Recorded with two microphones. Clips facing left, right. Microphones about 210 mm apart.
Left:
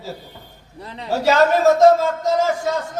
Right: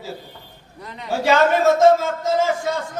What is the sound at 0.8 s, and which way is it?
Speech, 30° left (ahead or behind).